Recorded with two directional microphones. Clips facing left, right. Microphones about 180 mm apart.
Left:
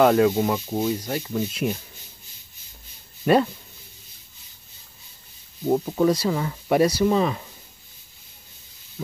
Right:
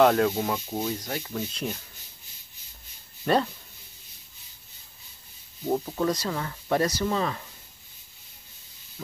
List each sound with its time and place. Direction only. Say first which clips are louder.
0.0 s speech: left 3 dB; 5° left (ahead or behind)
3.3 s speech: left 5 dB; 10° left (ahead or behind)
5.9 s speech: left 6 dB; 10° left (ahead or behind)